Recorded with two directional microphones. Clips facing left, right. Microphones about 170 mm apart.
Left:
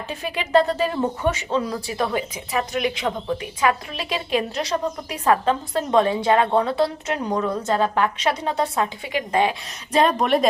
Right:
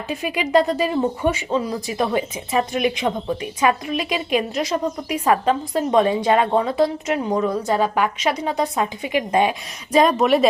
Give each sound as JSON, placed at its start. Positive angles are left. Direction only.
{"t": 0.1, "sound": "a woman's voice", "side_deg": -10}
{"t": 2.0, "sound": "a woman's voice", "side_deg": -25}